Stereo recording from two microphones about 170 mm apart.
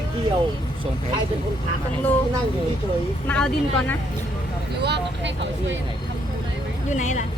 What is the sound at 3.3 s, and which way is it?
Speech, 10° left (ahead or behind).